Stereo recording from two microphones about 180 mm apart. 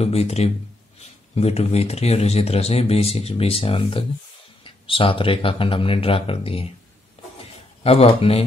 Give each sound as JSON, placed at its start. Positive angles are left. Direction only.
{"t": 0.0, "sound": "speech", "side_deg": 35}
{"t": 7.2, "sound": "a sound", "side_deg": 35}
{"t": 7.8, "sound": "speech", "side_deg": 35}